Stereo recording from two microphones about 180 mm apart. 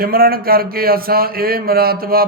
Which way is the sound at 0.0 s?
55° right (ahead or behind).